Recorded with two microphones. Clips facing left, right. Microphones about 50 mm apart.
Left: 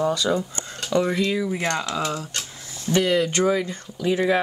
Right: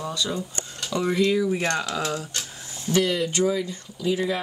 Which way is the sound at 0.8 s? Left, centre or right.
Centre.